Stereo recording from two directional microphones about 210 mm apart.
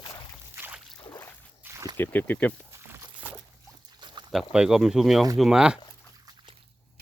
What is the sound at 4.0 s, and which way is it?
Pour, 20° right (ahead or behind).